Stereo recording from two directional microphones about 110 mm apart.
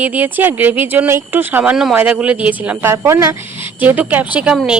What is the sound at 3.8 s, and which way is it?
Speech, 15° right (ahead or behind).